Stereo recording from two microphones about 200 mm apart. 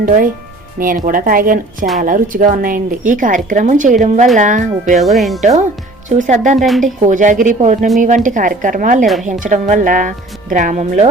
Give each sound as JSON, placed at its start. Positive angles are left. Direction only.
{"t": 0.0, "sound": "a woman's voice", "side_deg": -45}
{"t": 4.9, "sound": "speech", "side_deg": 0}
{"t": 5.4, "sound": "a woman's voice", "side_deg": -35}
{"t": 6.6, "sound": "speech", "side_deg": 0}
{"t": 7.0, "sound": "a woman's voice", "side_deg": -40}